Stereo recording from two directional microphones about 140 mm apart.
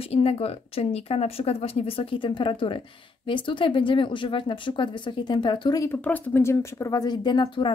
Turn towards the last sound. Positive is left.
turn(degrees=35)  # may be behind; listen again after turning